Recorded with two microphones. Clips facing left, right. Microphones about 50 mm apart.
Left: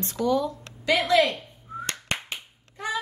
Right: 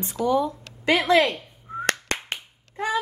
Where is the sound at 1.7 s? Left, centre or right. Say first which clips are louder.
Right 4 dB; right.